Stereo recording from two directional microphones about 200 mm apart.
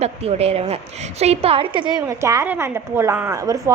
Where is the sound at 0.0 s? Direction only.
30° right (ahead or behind).